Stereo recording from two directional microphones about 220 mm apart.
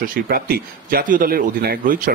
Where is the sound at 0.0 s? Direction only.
40° right (ahead or behind).